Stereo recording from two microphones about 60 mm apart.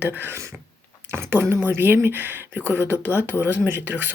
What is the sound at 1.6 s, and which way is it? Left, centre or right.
Speech, right.